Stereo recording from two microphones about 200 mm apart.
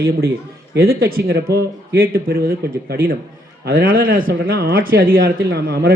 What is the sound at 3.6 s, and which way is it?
A man's voice, 45° right (ahead or behind).